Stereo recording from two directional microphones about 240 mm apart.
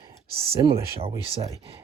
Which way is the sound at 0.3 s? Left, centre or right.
Right.